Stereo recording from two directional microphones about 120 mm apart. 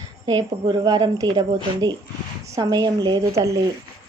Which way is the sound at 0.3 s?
35° right (ahead or behind).